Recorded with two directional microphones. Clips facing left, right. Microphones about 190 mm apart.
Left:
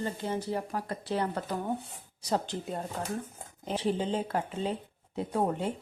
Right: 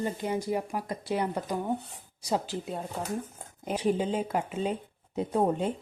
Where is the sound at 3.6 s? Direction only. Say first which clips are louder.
Right 2 dB; 10° right (ahead or behind).